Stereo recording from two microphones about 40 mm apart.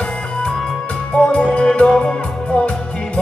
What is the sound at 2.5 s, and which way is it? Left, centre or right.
Music, left.